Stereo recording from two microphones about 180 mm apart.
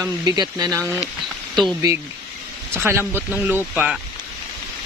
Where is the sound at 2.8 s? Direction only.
10° right (ahead or behind).